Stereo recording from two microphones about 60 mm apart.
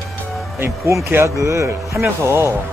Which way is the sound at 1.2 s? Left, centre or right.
Right.